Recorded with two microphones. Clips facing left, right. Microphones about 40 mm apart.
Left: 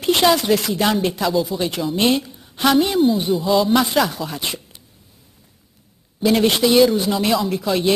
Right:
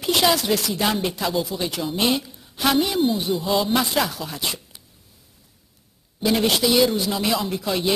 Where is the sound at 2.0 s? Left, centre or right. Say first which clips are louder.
Left 4 dB; centre.